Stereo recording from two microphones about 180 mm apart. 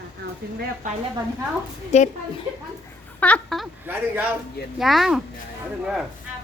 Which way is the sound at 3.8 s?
10° right (ahead or behind).